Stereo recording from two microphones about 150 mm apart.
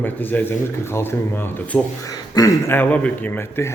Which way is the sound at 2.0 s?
25° left (ahead or behind).